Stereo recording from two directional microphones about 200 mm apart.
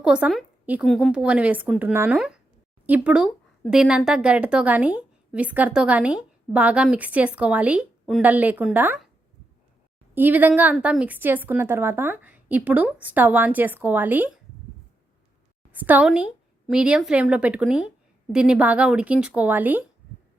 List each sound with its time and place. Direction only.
0.0 s a woman's voice: 5° right (ahead or behind)
10.2 s speech: 10° right (ahead or behind)
15.7 s a woman's voice: 10° right (ahead or behind)